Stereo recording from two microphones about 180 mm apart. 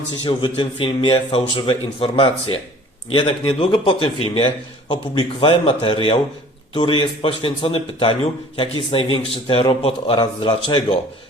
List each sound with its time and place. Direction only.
0.3 s a man's voice: 25° left (ahead or behind)